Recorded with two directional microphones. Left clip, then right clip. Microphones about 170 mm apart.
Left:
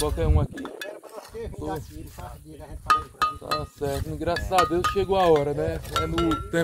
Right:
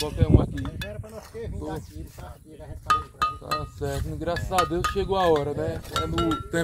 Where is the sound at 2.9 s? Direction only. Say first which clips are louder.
Left 1 dB; 25° left (ahead or behind).